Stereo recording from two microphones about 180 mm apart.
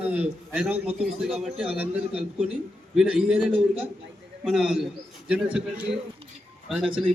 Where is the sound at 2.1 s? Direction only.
35° right (ahead or behind).